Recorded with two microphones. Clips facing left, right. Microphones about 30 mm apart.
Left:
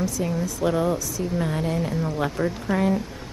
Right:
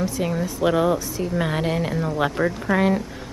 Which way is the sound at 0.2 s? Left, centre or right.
Right.